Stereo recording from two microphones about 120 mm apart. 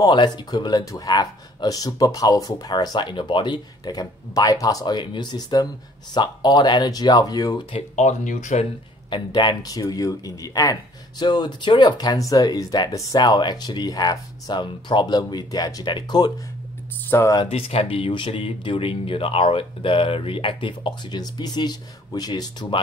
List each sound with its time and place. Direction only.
0.0 s speech: 40° left (ahead or behind)
7.9 s speech: 75° left (ahead or behind)
9.1 s speech: 40° left (ahead or behind)
17.1 s speech: 25° left (ahead or behind)
17.5 s speech: 55° left (ahead or behind); by 22.8 s 35° left (ahead or behind)